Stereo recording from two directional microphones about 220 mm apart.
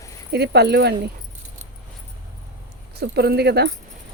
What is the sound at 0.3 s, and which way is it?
Speech, 50° right (ahead or behind).